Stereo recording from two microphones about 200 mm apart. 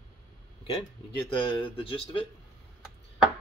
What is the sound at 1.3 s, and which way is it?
Speech, 25° left (ahead or behind).